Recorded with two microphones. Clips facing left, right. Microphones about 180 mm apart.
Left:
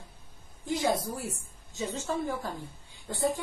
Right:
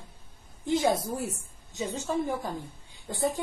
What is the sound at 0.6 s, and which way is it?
A woman's voice, 25° right (ahead or behind).